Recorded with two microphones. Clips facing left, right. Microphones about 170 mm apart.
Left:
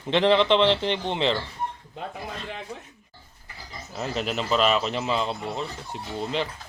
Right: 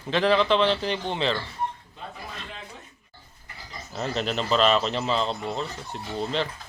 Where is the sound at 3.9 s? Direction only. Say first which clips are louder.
Right 1 dB; 5° left (ahead or behind).